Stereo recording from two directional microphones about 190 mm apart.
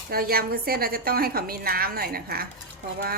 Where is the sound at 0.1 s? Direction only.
50° right (ahead or behind).